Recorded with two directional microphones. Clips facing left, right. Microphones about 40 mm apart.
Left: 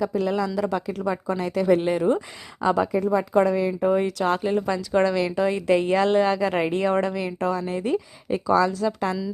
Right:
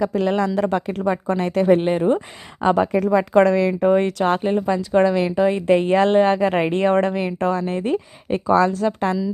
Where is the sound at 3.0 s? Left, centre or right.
Right.